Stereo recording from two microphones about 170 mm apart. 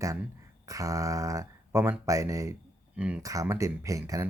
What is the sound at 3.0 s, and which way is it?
Speech, 5° right (ahead or behind).